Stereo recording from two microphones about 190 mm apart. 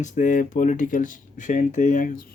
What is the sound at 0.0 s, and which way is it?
Speech, 45° left (ahead or behind).